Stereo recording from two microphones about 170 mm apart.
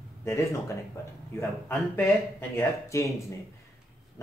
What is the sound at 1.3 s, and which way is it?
Speech, 15° left (ahead or behind).